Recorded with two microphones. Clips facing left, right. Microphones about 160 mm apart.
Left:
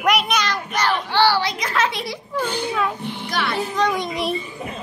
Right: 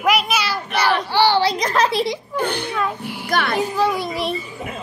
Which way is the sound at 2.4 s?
60° right (ahead or behind).